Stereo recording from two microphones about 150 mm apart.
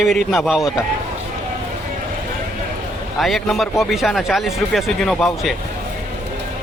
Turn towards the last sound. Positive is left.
turn(degrees=0)  # may be behind; listen again after turning